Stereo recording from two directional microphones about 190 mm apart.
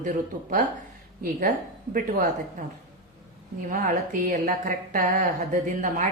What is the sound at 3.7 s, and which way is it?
A woman's voice, 45° right (ahead or behind).